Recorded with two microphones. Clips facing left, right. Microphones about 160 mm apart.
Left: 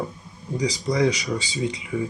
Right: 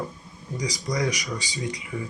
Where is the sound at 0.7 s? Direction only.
25° left (ahead or behind).